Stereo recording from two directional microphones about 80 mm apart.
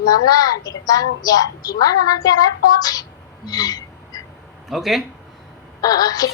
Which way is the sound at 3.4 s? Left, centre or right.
Left.